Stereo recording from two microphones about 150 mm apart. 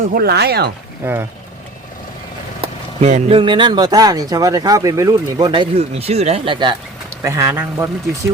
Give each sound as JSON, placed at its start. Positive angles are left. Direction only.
{"t": 0.1, "sound": "speech", "side_deg": -90}
{"t": 1.0, "sound": "speech", "side_deg": -15}
{"t": 2.6, "sound": "a sound", "side_deg": -50}
{"t": 3.3, "sound": "speech", "side_deg": -30}
{"t": 7.3, "sound": "speech", "side_deg": -20}